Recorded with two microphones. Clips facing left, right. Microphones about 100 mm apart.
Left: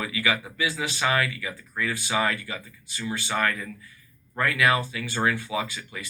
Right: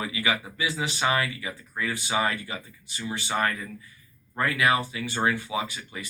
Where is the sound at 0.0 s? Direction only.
25° right (ahead or behind).